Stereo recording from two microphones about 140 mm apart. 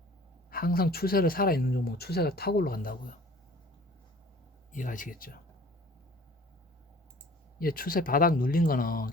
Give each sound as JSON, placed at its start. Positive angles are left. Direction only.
{"t": 0.5, "sound": "speech", "side_deg": 90}
{"t": 4.7, "sound": "speech", "side_deg": 65}
{"t": 7.6, "sound": "speech", "side_deg": 90}